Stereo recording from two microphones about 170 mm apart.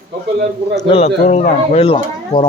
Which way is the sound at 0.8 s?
35° left (ahead or behind).